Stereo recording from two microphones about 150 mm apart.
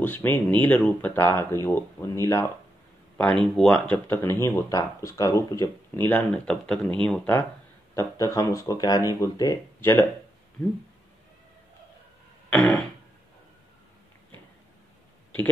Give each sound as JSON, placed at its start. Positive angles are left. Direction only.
{"t": 0.0, "sound": "speech", "side_deg": 10}
{"t": 3.2, "sound": "speech", "side_deg": 5}
{"t": 12.4, "sound": "music", "side_deg": 5}